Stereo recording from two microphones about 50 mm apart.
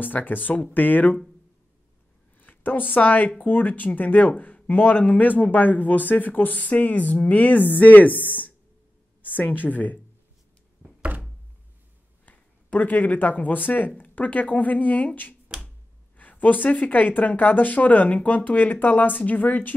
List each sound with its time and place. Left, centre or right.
0.0 s speech: left
2.3 s speech: left
10.8 s thunk: right
12.3 s speech: left